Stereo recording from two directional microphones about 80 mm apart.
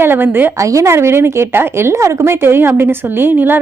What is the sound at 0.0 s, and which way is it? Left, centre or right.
Speech, right.